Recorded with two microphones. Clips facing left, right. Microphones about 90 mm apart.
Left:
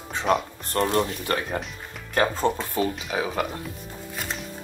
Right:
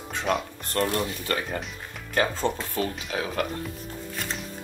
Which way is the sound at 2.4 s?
15° left (ahead or behind).